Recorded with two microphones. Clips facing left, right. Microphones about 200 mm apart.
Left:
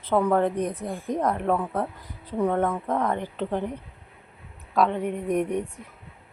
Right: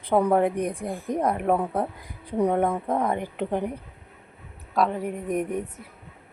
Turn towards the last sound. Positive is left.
turn(degrees=-5)  # may be behind; listen again after turning